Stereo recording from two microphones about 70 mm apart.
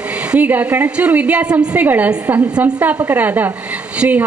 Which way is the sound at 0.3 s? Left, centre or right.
Right.